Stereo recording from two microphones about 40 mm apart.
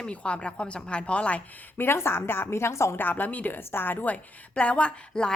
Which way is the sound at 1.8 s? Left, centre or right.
Left.